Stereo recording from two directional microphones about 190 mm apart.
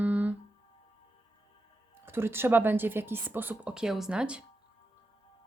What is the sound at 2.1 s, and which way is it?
Speech, 10° right (ahead or behind).